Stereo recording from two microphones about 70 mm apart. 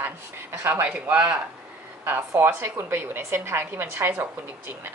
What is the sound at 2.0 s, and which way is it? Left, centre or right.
A woman's voice, right.